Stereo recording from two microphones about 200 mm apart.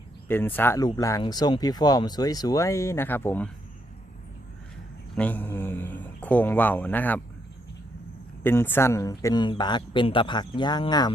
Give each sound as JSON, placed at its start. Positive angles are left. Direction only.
{"t": 0.3, "sound": "speech", "side_deg": 10}
{"t": 5.1, "sound": "a sound", "side_deg": 5}
{"t": 8.4, "sound": "speech", "side_deg": 10}